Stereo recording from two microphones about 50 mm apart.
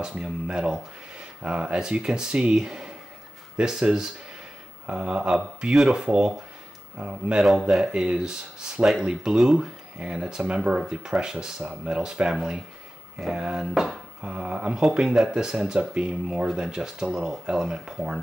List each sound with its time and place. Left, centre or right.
0.2 s speech: centre
11.6 s speech: right
12.0 s speech: centre